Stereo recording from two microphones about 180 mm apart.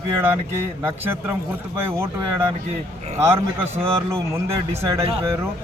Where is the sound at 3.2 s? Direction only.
15° right (ahead or behind).